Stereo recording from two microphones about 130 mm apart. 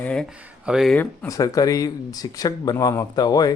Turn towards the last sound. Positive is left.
turn(degrees=30)  # may be behind; listen again after turning